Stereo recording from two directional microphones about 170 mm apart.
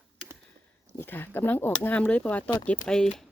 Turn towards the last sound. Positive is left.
turn(degrees=5)  # may be behind; listen again after turning